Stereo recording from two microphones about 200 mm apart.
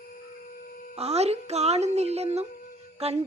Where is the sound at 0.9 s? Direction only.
30° right (ahead or behind).